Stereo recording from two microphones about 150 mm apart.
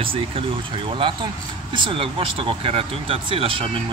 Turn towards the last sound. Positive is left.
turn(degrees=-35)  # may be behind; listen again after turning